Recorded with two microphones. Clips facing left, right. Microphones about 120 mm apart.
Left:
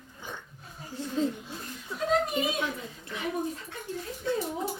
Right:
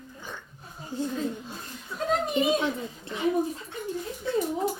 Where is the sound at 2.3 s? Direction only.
25° right (ahead or behind).